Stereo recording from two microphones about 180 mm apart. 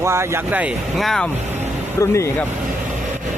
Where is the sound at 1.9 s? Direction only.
15° left (ahead or behind).